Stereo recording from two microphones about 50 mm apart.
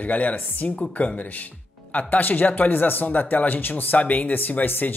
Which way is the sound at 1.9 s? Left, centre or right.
Left.